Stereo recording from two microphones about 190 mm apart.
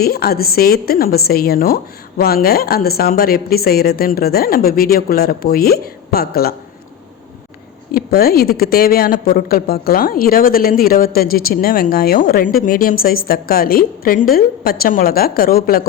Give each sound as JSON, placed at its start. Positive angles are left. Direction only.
{"t": 0.0, "sound": "speech", "side_deg": 55}
{"t": 7.9, "sound": "speech", "side_deg": 55}